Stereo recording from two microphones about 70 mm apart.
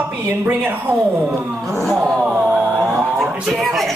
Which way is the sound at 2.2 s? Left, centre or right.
Centre.